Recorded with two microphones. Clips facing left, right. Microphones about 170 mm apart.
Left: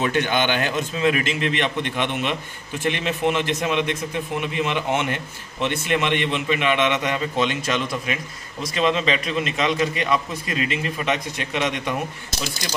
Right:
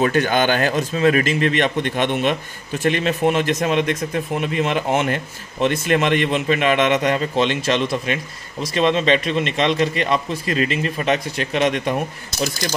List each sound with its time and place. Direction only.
0.0 s a man's voice: 40° right (ahead or behind)
10.4 s a man's voice: 15° left (ahead or behind)
10.7 s a man's voice: 35° right (ahead or behind)